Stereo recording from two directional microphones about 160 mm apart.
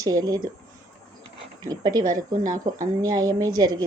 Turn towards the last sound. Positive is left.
turn(degrees=-25)  # may be behind; listen again after turning